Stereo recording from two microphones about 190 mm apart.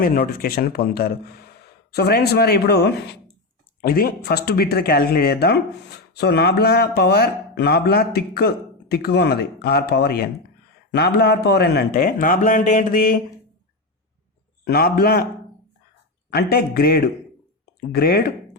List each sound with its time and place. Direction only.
0.0 s speech: 50° left (ahead or behind)
14.6 s speech: 55° left (ahead or behind)
16.3 s speech: 55° left (ahead or behind)